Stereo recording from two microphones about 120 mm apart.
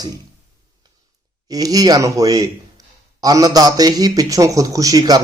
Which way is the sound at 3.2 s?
30° right (ahead or behind).